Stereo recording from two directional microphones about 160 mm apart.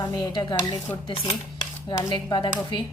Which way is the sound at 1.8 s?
25° left (ahead or behind).